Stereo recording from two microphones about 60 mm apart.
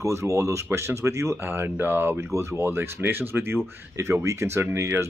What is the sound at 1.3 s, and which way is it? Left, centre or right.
Speech, right.